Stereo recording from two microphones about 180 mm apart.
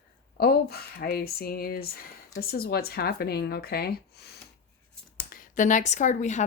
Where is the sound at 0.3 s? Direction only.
60° left (ahead or behind).